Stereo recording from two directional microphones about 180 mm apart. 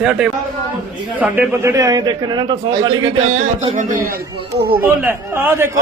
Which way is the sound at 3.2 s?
45° right (ahead or behind).